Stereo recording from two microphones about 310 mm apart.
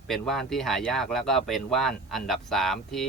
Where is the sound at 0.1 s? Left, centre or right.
Centre.